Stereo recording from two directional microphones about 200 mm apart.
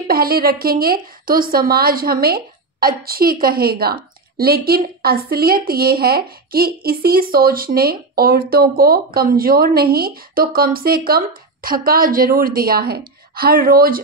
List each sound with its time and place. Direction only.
0.1 s a woman's voice: 50° right (ahead or behind)